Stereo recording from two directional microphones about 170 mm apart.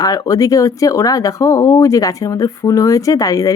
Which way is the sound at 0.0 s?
20° left (ahead or behind).